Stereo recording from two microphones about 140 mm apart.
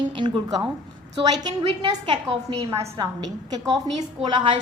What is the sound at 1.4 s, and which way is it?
A woman's voice, 35° right (ahead or behind).